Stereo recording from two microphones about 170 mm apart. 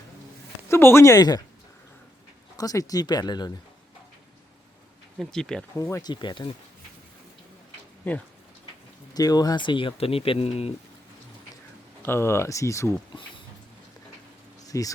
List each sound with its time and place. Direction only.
0.7 s speech: 15° left (ahead or behind)
2.6 s speech: 20° left (ahead or behind)
5.1 s speech: 5° left (ahead or behind)
5.7 s speech: 20° left (ahead or behind)
9.1 s speech: 20° left (ahead or behind)
12.0 s speech: 15° left (ahead or behind)
14.6 s a sound: 20° left (ahead or behind)